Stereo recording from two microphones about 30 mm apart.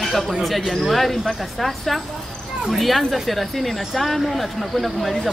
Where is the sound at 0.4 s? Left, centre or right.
Centre.